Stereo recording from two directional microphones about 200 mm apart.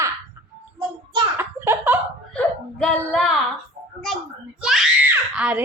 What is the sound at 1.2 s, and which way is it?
Speech, 10° right (ahead or behind).